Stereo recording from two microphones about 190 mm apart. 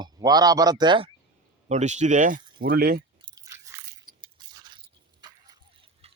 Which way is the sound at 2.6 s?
50° right (ahead or behind).